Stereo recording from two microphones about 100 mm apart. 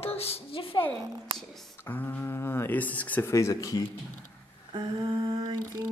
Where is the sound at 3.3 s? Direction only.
30° left (ahead or behind).